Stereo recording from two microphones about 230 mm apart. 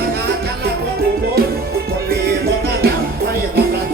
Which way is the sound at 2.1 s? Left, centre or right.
Right.